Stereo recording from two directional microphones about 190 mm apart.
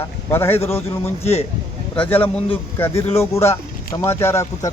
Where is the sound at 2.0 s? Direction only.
10° left (ahead or behind).